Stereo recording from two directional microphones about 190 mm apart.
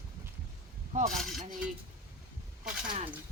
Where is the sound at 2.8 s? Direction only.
25° right (ahead or behind).